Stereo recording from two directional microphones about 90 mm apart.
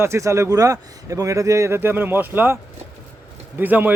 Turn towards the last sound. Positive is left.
turn(degrees=-20)  # may be behind; listen again after turning